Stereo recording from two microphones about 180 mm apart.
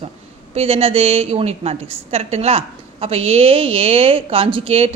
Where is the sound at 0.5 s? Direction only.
35° right (ahead or behind).